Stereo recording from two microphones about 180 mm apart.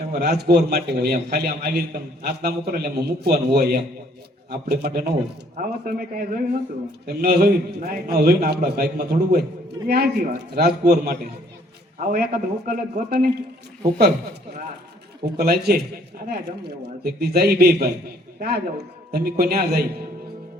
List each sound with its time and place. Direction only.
0.1 s a man's voice: 60° right (ahead or behind)
15.4 s a man's voice: 60° right (ahead or behind)